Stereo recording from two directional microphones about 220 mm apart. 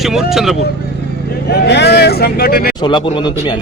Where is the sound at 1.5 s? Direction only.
50° left (ahead or behind).